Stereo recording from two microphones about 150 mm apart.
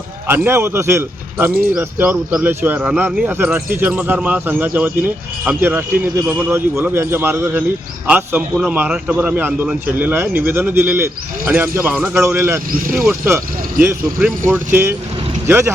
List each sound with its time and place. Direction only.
0.3 s a man's voice: 15° right (ahead or behind)